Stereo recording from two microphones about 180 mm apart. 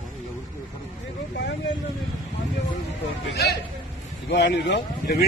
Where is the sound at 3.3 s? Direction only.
70° left (ahead or behind).